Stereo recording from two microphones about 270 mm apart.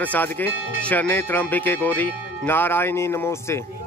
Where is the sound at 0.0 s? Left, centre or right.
Centre.